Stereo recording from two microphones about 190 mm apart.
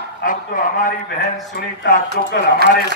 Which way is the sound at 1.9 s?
45° left (ahead or behind).